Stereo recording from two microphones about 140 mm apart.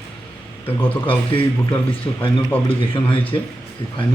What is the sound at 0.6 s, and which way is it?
Speech, 10° left (ahead or behind).